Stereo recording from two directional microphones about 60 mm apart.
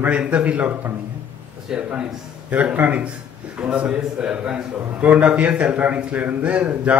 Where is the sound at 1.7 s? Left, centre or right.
Centre.